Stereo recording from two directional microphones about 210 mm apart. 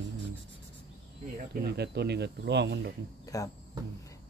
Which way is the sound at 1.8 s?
50° right (ahead or behind).